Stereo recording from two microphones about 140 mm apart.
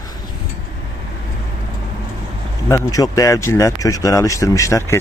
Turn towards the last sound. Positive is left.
turn(degrees=20)  # may be behind; listen again after turning